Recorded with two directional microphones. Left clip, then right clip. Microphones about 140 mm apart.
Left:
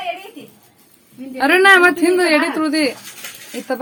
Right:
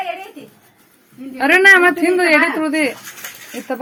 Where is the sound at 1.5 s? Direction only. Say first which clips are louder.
Right 1 dB; 15° left (ahead or behind).